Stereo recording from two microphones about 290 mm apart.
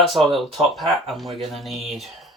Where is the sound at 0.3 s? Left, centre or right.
Centre.